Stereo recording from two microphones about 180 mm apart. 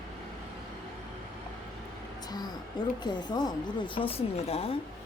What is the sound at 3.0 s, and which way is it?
A woman's voice, 25° left (ahead or behind).